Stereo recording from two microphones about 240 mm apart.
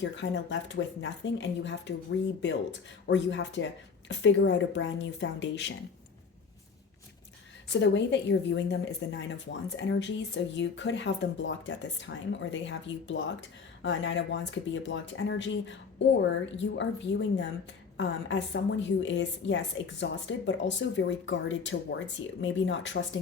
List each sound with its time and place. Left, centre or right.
0.0 s speech: left
7.7 s speech: left